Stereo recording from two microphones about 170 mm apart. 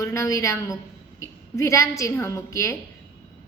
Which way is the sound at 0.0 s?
20° left (ahead or behind).